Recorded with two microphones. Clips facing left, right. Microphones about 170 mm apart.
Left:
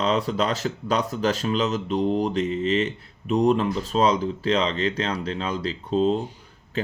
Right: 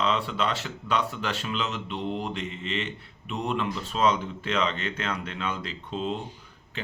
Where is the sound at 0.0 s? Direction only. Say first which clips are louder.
Left 4 dB; 40° left (ahead or behind).